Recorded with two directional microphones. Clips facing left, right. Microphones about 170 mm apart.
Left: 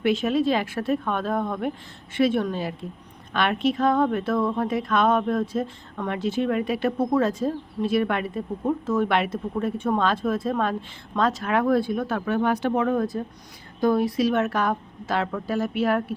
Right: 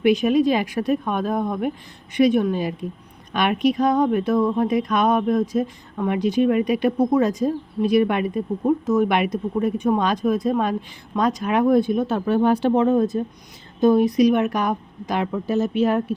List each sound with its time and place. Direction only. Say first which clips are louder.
0.0 s a woman's voice: right 5 dB; 15° right (ahead or behind)